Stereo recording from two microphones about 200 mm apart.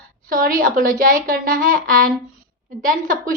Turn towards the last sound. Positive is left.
turn(degrees=-45)  # may be behind; listen again after turning